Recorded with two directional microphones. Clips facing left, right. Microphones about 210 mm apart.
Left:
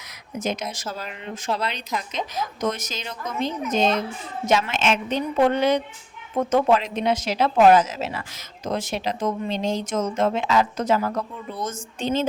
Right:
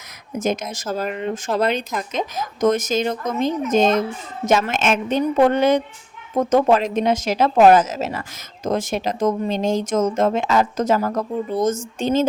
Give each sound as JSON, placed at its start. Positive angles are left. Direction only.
{"t": 0.3, "sound": "speech", "side_deg": -45}